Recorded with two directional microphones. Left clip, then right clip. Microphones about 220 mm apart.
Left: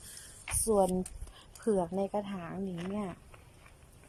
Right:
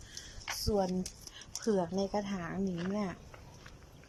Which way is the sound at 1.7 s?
10° left (ahead or behind).